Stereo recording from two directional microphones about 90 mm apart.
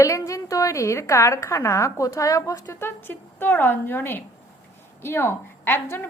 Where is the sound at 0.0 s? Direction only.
35° left (ahead or behind).